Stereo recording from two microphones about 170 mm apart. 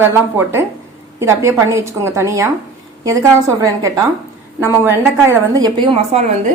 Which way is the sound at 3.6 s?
20° right (ahead or behind).